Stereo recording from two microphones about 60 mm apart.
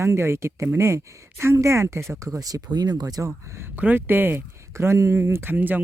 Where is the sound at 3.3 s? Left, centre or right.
Right.